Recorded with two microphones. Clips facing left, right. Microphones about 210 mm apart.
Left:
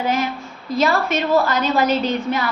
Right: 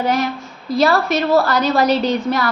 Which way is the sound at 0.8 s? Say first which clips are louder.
Right 3 dB; 35° right (ahead or behind).